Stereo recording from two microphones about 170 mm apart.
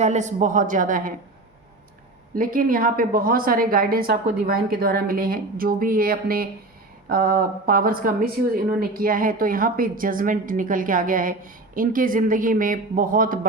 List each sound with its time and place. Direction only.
0.0 s a woman's voice: 45° right (ahead or behind)
2.3 s speech: 55° right (ahead or behind)